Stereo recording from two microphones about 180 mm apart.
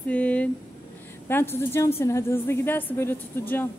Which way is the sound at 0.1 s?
5° left (ahead or behind).